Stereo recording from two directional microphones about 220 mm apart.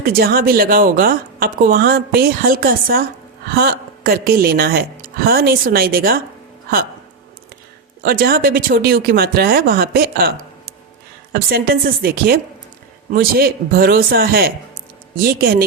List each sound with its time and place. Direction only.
0.0 s speech: 45° right (ahead or behind)
8.0 s speech: 45° right (ahead or behind)